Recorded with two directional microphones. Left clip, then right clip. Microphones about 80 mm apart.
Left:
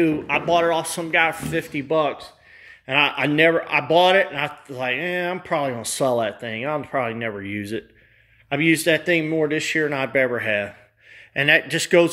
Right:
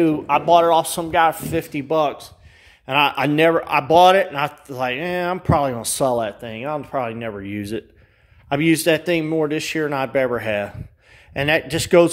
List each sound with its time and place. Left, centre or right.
0.0 s speech: right
2.9 s speech: right
6.1 s speech: right
7.4 s speech: right
8.7 s speech: right
9.3 s speech: right
11.3 s speech: right